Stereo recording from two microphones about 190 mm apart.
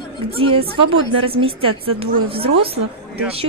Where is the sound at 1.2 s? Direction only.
30° right (ahead or behind).